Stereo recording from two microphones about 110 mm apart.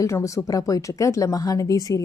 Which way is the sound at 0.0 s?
25° left (ahead or behind).